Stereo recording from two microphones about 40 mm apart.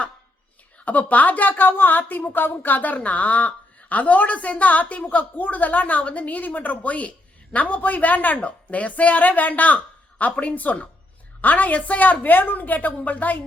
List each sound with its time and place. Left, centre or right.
0.9 s a woman's voice: left